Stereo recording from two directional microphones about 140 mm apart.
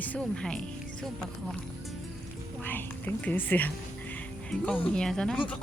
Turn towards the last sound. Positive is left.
turn(degrees=5)  # may be behind; listen again after turning